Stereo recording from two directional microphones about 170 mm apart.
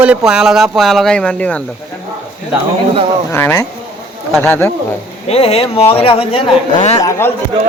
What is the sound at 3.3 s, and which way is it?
Speech, 15° left (ahead or behind).